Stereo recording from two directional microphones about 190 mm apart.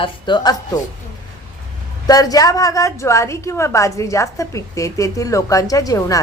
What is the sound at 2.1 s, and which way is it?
A woman's voice, 20° left (ahead or behind).